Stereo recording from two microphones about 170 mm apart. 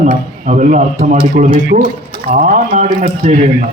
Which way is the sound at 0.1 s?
50° right (ahead or behind).